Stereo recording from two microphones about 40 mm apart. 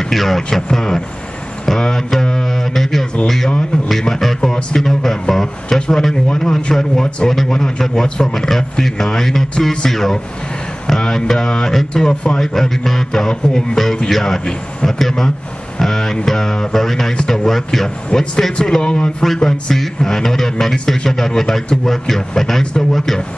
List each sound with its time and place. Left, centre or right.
0.1 s a man's voice: centre
0.6 s a man's voice: centre
1.8 s music: centre
2.7 s a sound: centre
3.9 s a man's voice: centre
5.8 s a man's voice: centre
12.1 s a man's voice: left
12.4 s a man's voice: centre
14.0 s a man's voice: centre
18.8 s a man's voice: left
19.2 s a man's voice: centre